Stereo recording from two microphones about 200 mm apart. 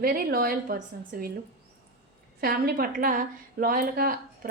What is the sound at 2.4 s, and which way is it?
A woman's voice, 50° right (ahead or behind).